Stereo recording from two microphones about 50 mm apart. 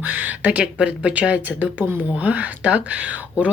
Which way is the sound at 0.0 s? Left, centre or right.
Right.